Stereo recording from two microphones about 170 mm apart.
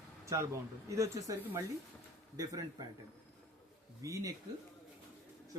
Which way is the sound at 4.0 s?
20° right (ahead or behind).